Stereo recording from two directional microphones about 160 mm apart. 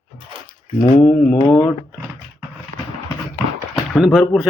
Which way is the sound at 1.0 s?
5° left (ahead or behind).